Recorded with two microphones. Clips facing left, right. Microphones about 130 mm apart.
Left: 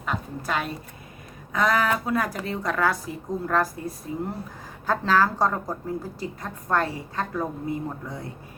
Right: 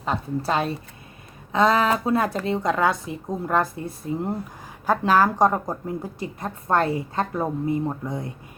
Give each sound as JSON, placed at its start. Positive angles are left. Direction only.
{"t": 0.0, "sound": "a woman's voice", "side_deg": -30}